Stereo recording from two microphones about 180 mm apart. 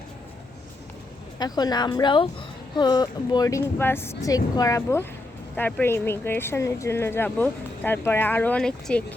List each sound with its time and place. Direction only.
1.4 s speech: 20° left (ahead or behind); by 9.1 s 5° left (ahead or behind)